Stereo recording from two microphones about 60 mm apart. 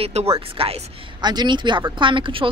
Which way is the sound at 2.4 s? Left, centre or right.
Right.